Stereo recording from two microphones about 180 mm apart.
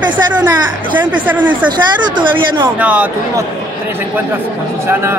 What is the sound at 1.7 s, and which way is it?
Speech, 25° right (ahead or behind).